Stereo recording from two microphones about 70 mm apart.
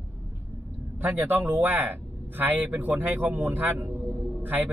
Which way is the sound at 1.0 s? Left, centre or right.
Right.